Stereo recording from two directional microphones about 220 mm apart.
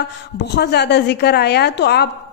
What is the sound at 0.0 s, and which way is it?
A woman's voice, 50° left (ahead or behind).